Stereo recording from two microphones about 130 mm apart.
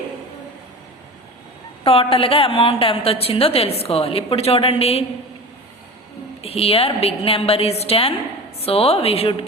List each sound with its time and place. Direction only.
1.8 s a woman's voice: 45° left (ahead or behind)
6.4 s a woman's voice: 50° left (ahead or behind)